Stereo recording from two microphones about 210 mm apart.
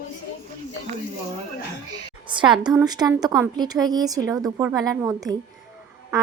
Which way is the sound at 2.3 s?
20° right (ahead or behind).